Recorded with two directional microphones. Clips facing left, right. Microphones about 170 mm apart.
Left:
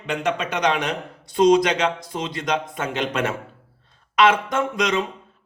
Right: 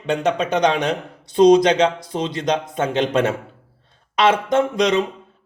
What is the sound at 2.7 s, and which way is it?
Speech, 30° right (ahead or behind).